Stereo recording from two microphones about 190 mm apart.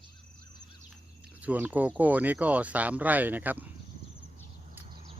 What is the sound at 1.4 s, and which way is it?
Speech, 10° right (ahead or behind).